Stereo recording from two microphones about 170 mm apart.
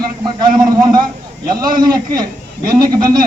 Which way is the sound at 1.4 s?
25° right (ahead or behind).